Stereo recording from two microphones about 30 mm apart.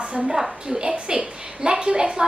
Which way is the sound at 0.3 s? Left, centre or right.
Centre.